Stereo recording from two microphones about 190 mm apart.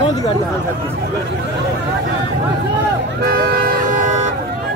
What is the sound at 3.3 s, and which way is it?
Vehicle, 55° right (ahead or behind).